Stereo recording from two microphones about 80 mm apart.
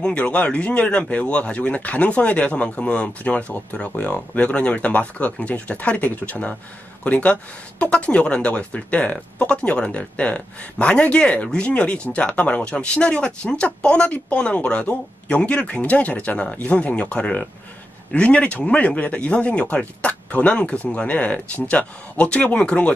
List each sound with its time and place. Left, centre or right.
0.0 s speech: centre